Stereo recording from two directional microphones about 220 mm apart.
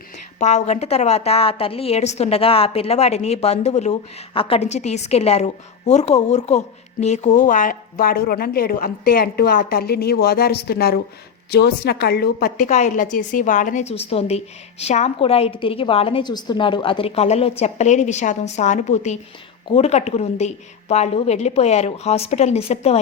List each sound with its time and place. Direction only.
0.3 s a woman's voice: 30° left (ahead or behind)
12.6 s a woman's voice: 30° left (ahead or behind)